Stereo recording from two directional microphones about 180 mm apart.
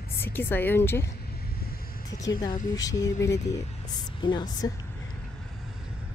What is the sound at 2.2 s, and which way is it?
Speech, 25° left (ahead or behind).